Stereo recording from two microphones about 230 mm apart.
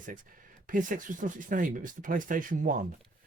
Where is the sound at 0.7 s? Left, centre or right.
Right.